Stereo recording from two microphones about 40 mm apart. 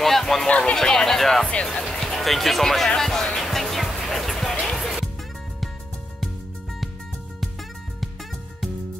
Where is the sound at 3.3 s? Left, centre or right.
Centre.